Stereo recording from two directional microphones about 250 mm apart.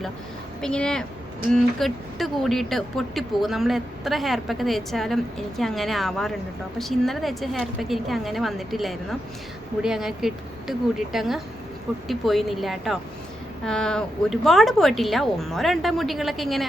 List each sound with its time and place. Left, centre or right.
0.6 s a woman's voice: centre